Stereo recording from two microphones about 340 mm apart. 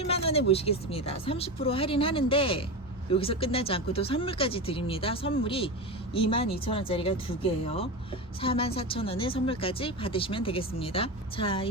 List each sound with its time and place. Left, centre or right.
0.0 s a woman's voice: centre